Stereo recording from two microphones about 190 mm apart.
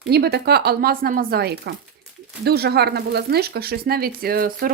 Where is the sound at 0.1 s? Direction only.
60° right (ahead or behind).